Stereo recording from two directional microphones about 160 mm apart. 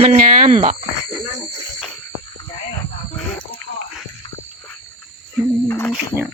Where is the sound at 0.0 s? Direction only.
50° right (ahead or behind).